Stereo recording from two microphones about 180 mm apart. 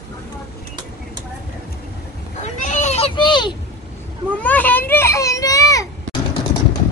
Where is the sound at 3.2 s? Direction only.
25° left (ahead or behind).